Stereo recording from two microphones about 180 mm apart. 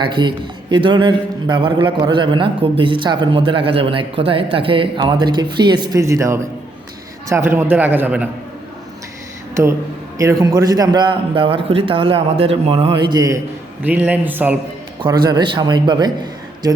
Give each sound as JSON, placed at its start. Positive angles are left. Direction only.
{"t": 0.0, "sound": "a man's voice", "side_deg": -25}
{"t": 10.2, "sound": "a man's voice", "side_deg": -20}
{"t": 13.8, "sound": "a man's voice", "side_deg": -10}
{"t": 15.0, "sound": "a man's voice", "side_deg": -25}